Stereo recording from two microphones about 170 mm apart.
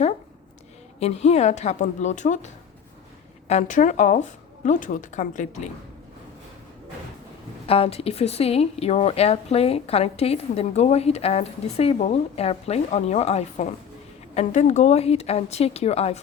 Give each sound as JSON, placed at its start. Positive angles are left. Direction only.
{"t": 0.9, "sound": "a woman's voice", "side_deg": 40}
{"t": 3.5, "sound": "a woman's voice", "side_deg": 50}
{"t": 7.7, "sound": "speech", "side_deg": 35}